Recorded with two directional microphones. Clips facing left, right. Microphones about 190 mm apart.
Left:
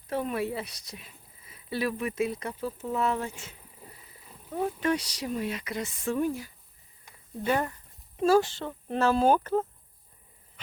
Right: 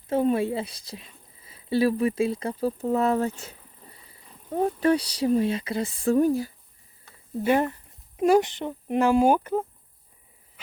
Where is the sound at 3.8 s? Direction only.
10° left (ahead or behind).